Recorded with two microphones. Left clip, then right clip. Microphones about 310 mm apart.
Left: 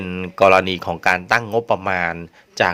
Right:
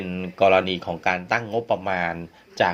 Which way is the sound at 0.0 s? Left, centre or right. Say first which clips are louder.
Left 5 dB; left.